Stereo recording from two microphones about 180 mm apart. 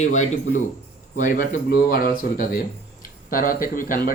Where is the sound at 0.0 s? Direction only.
40° left (ahead or behind).